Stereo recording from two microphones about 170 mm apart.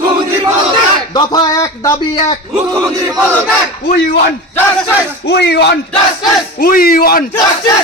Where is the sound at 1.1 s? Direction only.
25° left (ahead or behind).